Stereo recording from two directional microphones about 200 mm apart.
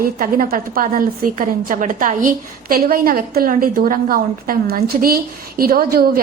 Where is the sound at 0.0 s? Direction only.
45° right (ahead or behind).